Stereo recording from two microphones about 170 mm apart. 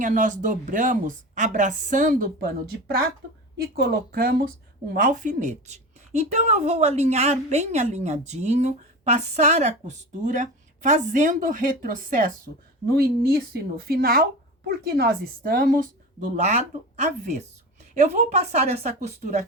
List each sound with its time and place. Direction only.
0.0 s a woman's voice: 50° right (ahead or behind)
13.2 s speech: 65° right (ahead or behind)
16.2 s a woman's voice: 45° right (ahead or behind)